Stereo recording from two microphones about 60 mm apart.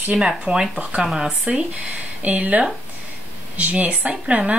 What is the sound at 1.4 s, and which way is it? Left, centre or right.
Speech, right.